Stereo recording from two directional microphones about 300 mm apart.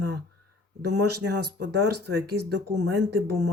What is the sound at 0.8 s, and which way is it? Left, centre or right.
Speech, right.